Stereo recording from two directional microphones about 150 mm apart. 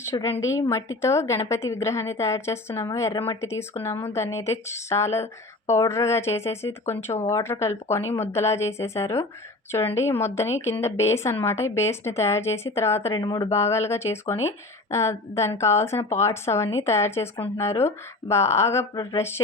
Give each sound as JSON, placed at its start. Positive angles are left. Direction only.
{"t": 0.1, "sound": "a woman's voice", "side_deg": 20}
{"t": 13.1, "sound": "speech", "side_deg": 30}
{"t": 13.5, "sound": "a woman's voice", "side_deg": 20}